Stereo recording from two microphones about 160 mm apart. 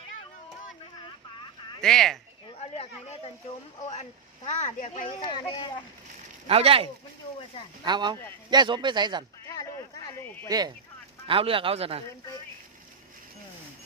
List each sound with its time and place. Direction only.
1.8 s speech: centre (ahead or behind)
2.6 s chatter: 40° left (ahead or behind)
4.4 s speech: 45° left (ahead or behind)
5.0 s speech: 30° left (ahead or behind)
6.5 s a man's voice: 35° right (ahead or behind)
9.5 s a sound: 20° left (ahead or behind)
10.5 s a man's voice: 20° right (ahead or behind)
11.3 s a man's voice: 35° right (ahead or behind)